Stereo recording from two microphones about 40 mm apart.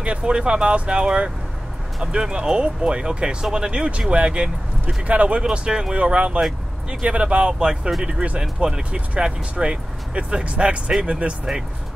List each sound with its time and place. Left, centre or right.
0.0 s speech: right
5.4 s speech: right